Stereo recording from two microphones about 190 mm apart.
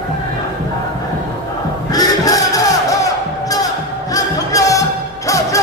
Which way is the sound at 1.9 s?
20° left (ahead or behind).